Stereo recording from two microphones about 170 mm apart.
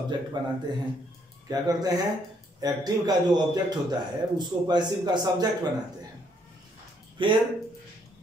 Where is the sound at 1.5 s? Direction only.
20° right (ahead or behind).